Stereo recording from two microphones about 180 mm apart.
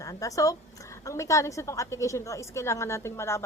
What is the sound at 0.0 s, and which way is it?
Speech, 20° left (ahead or behind).